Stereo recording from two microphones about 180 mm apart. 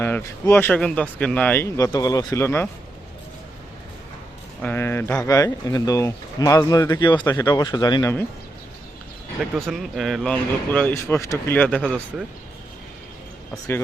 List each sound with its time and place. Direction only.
0.0 s speech: 15° left (ahead or behind)
4.6 s speech: 10° left (ahead or behind)
9.6 s speech: centre (ahead or behind)
11.8 s speech: 5° right (ahead or behind)